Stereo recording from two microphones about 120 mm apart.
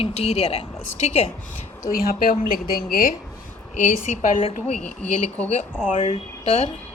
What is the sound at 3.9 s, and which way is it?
Speech, 90° left.